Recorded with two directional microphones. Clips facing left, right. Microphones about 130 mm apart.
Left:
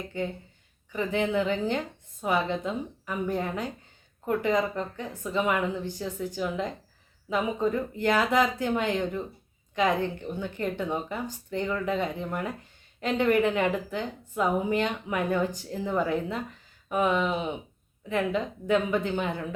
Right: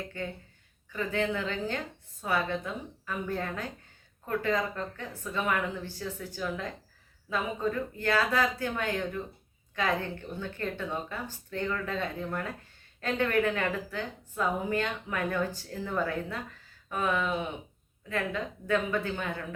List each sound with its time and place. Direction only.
0.1 s a woman's voice: 20° left (ahead or behind)